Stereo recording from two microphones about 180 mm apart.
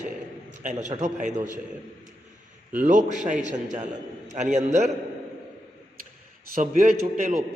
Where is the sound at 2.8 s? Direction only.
45° right (ahead or behind).